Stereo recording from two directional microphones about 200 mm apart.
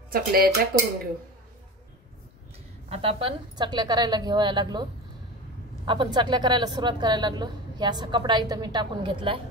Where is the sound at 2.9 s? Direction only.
30° right (ahead or behind).